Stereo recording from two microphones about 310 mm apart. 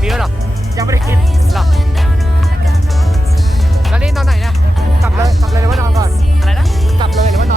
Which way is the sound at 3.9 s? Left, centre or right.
Centre.